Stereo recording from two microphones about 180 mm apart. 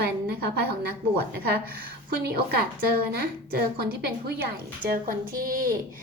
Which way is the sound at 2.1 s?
60° right (ahead or behind).